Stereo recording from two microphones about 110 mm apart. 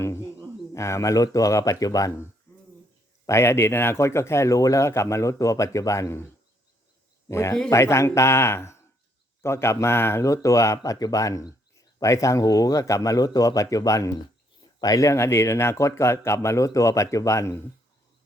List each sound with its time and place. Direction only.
0.0 s speech: 25° left (ahead or behind)
3.2 s a man's voice: 25° left (ahead or behind)